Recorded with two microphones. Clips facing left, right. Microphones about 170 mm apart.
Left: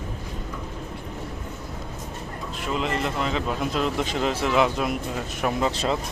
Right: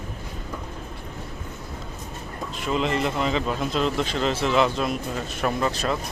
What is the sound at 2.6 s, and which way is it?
Speech, centre (ahead or behind).